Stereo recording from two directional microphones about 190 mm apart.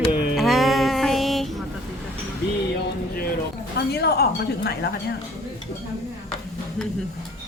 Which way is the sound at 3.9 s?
60° left (ahead or behind).